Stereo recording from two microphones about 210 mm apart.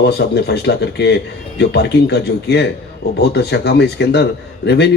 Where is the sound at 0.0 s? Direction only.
50° left (ahead or behind).